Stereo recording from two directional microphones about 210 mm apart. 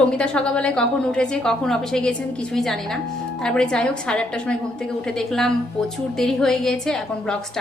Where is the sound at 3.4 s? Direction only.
5° left (ahead or behind).